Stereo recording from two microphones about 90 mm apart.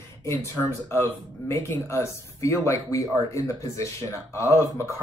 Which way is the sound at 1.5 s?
35° left (ahead or behind).